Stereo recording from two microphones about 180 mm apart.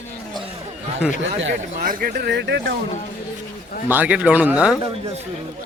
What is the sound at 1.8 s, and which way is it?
Speech, 55° right (ahead or behind).